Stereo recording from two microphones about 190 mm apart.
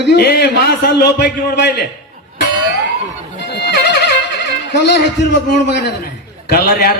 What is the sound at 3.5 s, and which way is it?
Music, 60° left (ahead or behind).